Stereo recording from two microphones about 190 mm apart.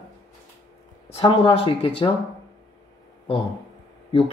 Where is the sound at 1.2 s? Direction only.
30° left (ahead or behind).